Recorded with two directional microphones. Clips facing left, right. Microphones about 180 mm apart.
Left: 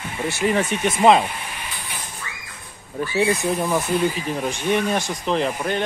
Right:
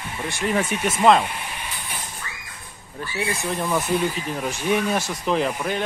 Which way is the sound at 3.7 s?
Centre (ahead or behind).